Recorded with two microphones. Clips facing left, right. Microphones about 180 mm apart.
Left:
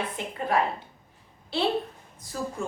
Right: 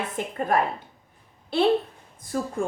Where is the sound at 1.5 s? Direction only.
50° right (ahead or behind).